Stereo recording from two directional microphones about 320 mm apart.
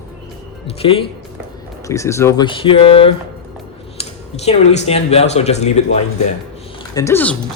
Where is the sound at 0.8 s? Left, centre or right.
Centre.